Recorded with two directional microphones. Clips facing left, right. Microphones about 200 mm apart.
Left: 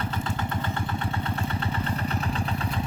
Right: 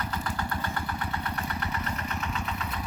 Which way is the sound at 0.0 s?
25° left (ahead or behind).